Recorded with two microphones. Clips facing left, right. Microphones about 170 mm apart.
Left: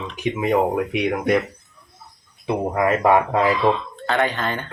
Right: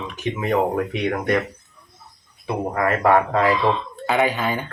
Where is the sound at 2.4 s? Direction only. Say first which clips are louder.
Left 2 dB; 20° left (ahead or behind).